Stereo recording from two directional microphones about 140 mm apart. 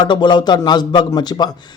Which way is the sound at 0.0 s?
30° left (ahead or behind).